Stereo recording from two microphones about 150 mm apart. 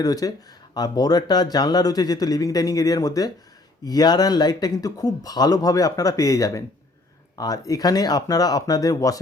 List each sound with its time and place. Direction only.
0.0 s speech: 25° left (ahead or behind)